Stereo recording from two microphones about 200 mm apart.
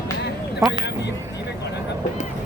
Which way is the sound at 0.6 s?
15° right (ahead or behind).